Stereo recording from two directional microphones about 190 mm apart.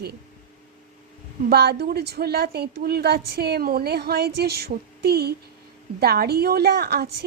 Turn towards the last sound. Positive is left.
turn(degrees=-55)  # may be behind; listen again after turning